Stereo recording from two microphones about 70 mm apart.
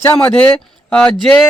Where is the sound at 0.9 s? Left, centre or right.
Centre.